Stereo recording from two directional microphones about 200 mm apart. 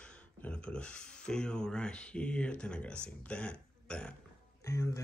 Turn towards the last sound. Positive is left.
turn(degrees=15)  # may be behind; listen again after turning